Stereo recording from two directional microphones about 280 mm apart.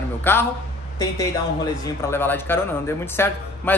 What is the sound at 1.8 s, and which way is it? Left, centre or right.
Speech, centre.